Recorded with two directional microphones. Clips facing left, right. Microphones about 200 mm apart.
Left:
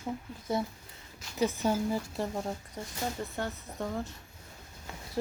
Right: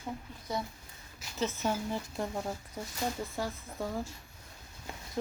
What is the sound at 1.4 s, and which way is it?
Speech, 15° left (ahead or behind).